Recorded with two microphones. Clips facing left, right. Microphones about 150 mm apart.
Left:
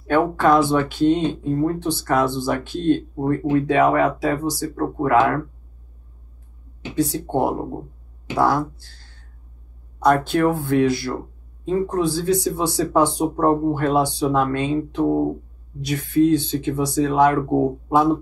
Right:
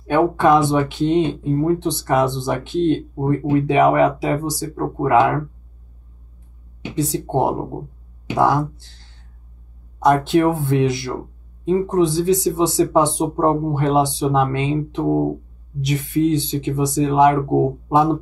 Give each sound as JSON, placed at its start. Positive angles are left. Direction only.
{"t": 0.0, "sound": "speech", "side_deg": -20}
{"t": 6.8, "sound": "speech", "side_deg": -20}
{"t": 10.0, "sound": "speech", "side_deg": -20}